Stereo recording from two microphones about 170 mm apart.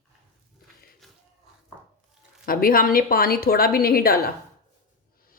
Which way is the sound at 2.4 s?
60° left (ahead or behind).